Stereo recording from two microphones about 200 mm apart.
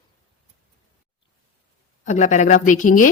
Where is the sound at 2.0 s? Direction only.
35° left (ahead or behind).